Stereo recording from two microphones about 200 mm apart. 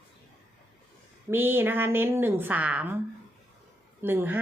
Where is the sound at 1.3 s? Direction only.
10° right (ahead or behind).